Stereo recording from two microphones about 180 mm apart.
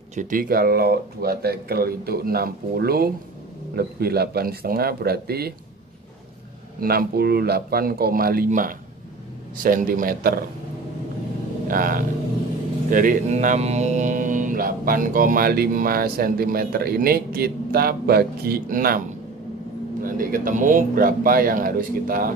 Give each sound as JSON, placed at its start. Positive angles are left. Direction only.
{"t": 0.1, "sound": "speech", "side_deg": -45}
{"t": 6.8, "sound": "speech", "side_deg": -55}
{"t": 11.7, "sound": "speech", "side_deg": -50}